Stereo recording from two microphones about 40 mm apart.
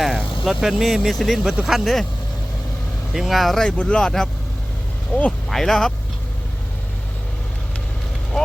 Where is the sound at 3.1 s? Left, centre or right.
Centre.